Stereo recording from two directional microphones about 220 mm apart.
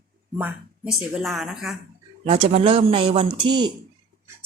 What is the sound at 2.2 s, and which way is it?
Speech, 30° right (ahead or behind).